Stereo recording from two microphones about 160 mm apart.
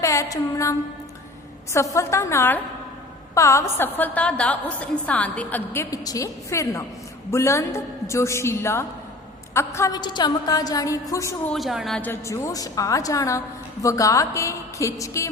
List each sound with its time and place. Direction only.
0.0 s music: 20° left (ahead or behind)
1.7 s a woman's voice: 20° left (ahead or behind)
11.5 s a woman's voice: centre (ahead or behind); by 15.3 s 20° left (ahead or behind)